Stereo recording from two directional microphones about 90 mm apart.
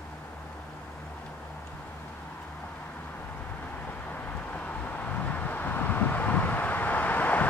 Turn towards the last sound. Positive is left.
turn(degrees=20)  # may be behind; listen again after turning